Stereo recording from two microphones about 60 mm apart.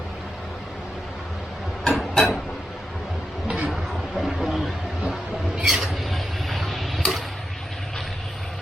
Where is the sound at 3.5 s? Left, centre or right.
Centre.